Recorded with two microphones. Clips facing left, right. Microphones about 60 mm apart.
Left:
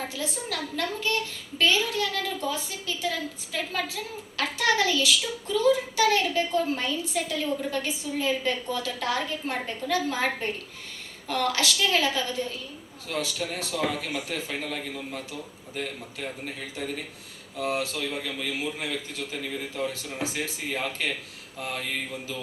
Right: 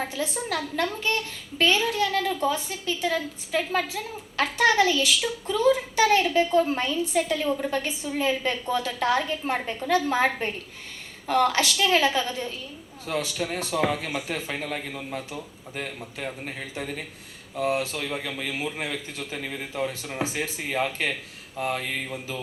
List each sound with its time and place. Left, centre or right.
0.1 s a woman's voice: right
11.3 s a woman's voice: right
17.6 s a woman's voice: right